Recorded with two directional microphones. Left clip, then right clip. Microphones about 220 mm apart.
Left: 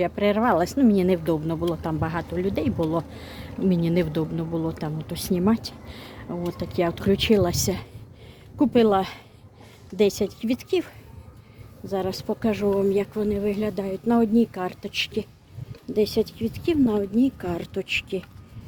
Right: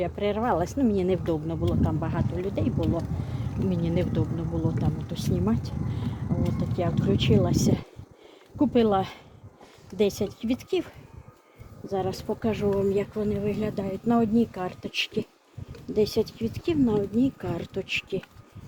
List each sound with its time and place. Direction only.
0.0 s a woman's voice: 20° left (ahead or behind)